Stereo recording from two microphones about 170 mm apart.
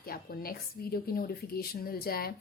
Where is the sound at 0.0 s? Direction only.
60° left (ahead or behind).